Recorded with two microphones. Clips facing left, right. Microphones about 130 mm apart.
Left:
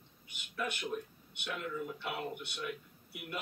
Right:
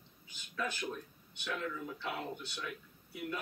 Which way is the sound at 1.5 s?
15° left (ahead or behind).